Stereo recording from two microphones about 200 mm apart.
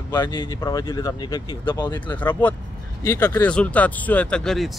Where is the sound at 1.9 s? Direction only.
10° left (ahead or behind).